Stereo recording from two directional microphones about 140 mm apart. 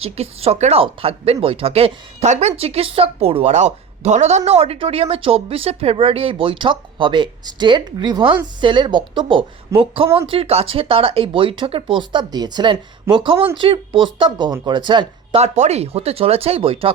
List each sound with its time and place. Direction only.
0.0 s speech: 45° right (ahead or behind)
15.4 s speech: 55° right (ahead or behind)